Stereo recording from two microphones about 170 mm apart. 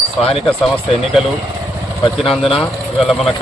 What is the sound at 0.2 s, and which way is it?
Speech, 35° left (ahead or behind).